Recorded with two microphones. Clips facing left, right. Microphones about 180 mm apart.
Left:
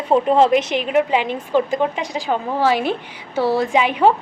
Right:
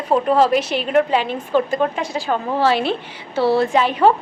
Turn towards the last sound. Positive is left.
turn(degrees=15)  # may be behind; listen again after turning